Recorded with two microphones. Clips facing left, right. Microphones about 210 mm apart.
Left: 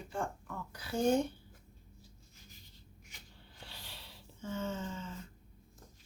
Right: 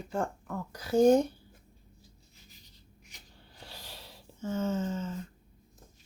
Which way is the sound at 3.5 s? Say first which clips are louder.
Right 5 dB; 40° right (ahead or behind).